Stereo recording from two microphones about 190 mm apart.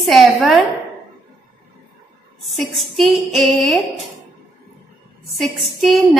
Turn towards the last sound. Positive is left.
turn(degrees=0)  # may be behind; listen again after turning